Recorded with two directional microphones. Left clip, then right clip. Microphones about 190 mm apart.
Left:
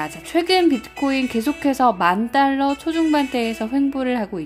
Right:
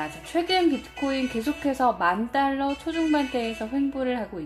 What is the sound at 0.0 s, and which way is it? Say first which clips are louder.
A woman's voice: left 6 dB; 25° left (ahead or behind).